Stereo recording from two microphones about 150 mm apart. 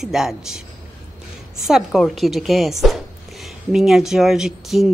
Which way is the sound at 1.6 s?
Centre (ahead or behind).